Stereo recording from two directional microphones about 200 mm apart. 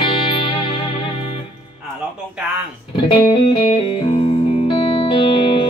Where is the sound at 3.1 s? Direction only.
25° left (ahead or behind).